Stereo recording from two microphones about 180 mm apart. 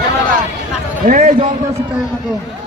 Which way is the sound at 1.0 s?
50° right (ahead or behind).